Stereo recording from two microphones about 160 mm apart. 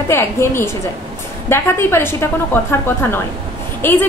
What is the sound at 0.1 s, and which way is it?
A woman's voice, 15° left (ahead or behind).